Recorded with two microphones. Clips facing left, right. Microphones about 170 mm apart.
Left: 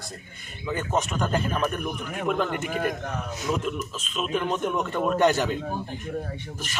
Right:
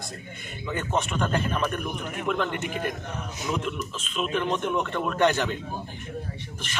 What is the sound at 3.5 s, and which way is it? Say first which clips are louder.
A man's voice: left 1 dB; centre (ahead or behind).